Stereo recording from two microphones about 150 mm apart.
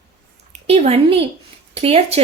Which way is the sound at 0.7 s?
45° right (ahead or behind).